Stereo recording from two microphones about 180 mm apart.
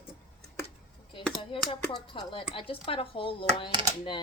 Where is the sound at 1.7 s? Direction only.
30° left (ahead or behind).